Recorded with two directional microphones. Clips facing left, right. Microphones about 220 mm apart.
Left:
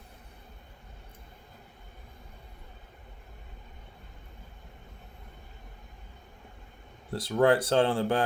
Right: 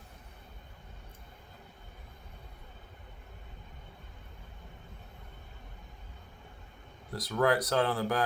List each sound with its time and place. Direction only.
7.1 s speech: 30° left (ahead or behind)